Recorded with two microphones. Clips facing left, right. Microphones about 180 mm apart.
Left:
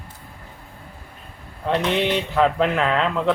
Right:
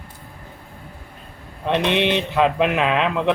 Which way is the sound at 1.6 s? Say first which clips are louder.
Right 2 dB; 20° right (ahead or behind).